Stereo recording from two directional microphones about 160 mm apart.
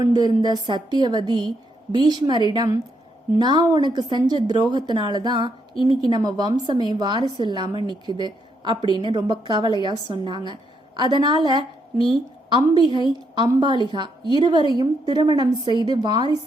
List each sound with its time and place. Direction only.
0.0 s a woman's voice: 25° right (ahead or behind)